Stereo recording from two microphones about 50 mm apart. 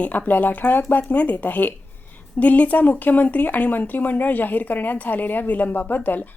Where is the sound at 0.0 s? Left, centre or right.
Left.